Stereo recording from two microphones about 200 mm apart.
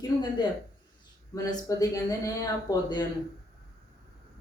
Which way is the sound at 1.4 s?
20° left (ahead or behind).